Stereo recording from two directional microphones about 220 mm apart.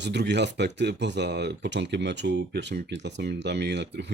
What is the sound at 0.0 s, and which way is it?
Speech, 50° right (ahead or behind).